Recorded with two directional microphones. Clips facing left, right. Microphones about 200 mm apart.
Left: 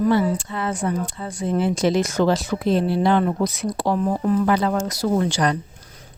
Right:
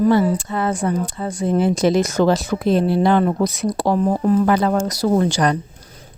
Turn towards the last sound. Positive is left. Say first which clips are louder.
# right 3 dB
turn(degrees=-45)  # may be behind; listen again after turning